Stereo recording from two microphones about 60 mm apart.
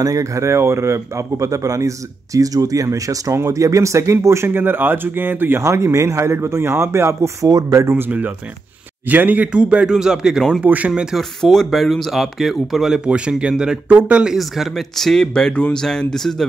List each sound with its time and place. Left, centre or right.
0.0 s speech: right
4.5 s speech: right
5.6 s a man's voice: right
9.0 s a man's voice: right; by 10.4 s centre
10.6 s a man's voice: right
11.1 s a man's voice: centre; by 14.2 s right
14.2 s speech: centre